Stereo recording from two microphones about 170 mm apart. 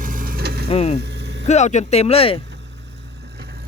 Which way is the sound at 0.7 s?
40° left (ahead or behind).